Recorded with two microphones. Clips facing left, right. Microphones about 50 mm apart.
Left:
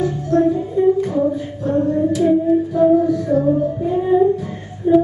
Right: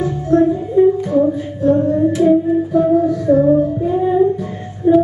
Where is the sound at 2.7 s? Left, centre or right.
Centre.